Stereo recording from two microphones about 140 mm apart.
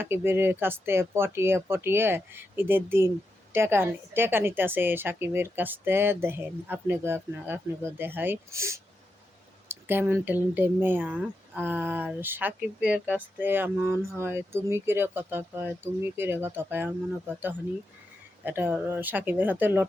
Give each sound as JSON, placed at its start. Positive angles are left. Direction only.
{"t": 0.0, "sound": "a woman's voice", "side_deg": -15}